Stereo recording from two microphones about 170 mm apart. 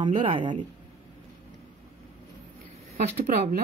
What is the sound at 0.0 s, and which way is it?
Speech, 30° right (ahead or behind).